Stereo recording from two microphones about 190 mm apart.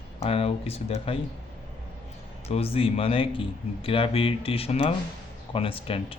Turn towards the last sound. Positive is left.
turn(degrees=30)  # may be behind; listen again after turning